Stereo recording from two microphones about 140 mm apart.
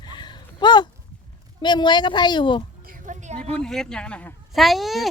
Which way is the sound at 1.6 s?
30° left (ahead or behind).